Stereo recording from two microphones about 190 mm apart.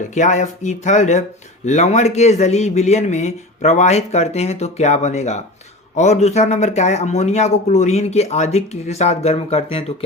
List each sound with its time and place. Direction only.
0.1 s speech: 40° left (ahead or behind)